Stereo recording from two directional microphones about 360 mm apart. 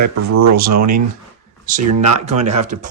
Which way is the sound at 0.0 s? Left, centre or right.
Right.